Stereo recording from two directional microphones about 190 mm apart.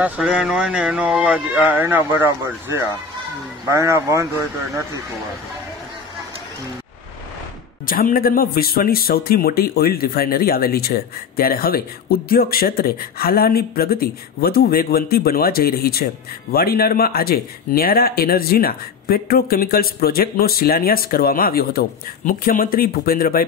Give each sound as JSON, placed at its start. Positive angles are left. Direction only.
{"t": 0.0, "sound": "speech", "side_deg": -5}
{"t": 7.8, "sound": "speech", "side_deg": 50}